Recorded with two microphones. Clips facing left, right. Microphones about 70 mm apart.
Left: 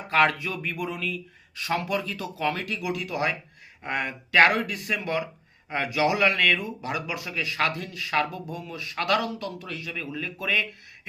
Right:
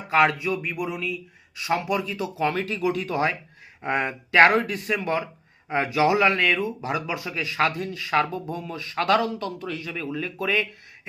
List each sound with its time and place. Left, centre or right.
0.1 s speech: centre